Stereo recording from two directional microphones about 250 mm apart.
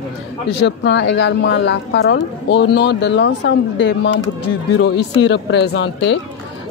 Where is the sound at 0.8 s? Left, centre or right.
Left.